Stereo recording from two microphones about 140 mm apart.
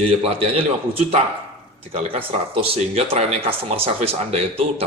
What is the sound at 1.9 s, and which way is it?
Speech, 45° right (ahead or behind).